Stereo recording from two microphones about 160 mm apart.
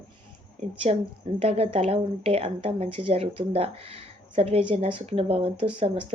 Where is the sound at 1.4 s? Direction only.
40° right (ahead or behind).